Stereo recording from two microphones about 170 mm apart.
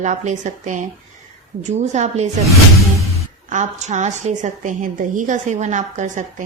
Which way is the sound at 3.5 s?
45° right (ahead or behind).